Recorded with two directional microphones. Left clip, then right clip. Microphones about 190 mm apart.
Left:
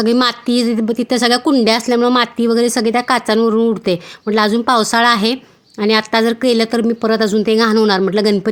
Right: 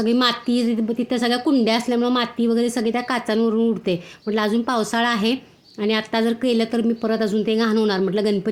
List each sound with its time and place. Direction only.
0.0 s a woman's voice: 20° left (ahead or behind)